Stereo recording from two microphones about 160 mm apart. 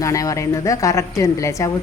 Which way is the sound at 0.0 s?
20° left (ahead or behind).